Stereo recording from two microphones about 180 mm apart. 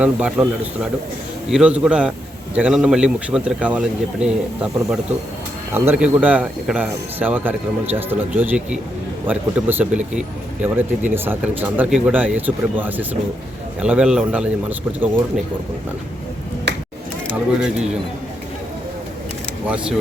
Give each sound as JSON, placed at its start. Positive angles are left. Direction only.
{"t": 0.0, "sound": "a man's voice", "side_deg": -5}
{"t": 16.7, "sound": "finger snapping", "side_deg": -70}
{"t": 17.3, "sound": "a man's voice", "side_deg": -5}
{"t": 19.6, "sound": "speech", "side_deg": -5}